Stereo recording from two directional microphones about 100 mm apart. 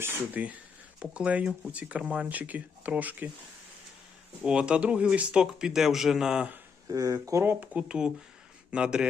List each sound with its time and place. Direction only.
0.0 s speech: 15° right (ahead or behind)
4.4 s speech: 10° right (ahead or behind)
6.8 s speech: 35° right (ahead or behind)
7.6 s speech: 15° right (ahead or behind)